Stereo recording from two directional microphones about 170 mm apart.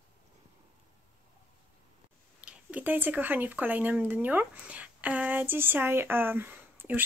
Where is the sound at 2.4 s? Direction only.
10° right (ahead or behind).